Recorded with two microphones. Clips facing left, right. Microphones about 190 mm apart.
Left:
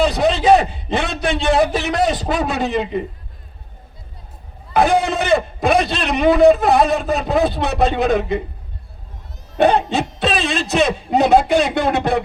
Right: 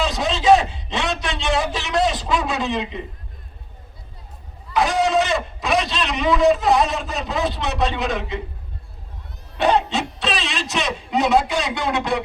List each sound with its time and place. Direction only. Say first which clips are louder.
0.0 s a man's voice: left 5 dB; 55° left (ahead or behind)
4.7 s a man's voice: left 3 dB; 55° left (ahead or behind)
9.6 s speech: left 4 dB; 55° left (ahead or behind)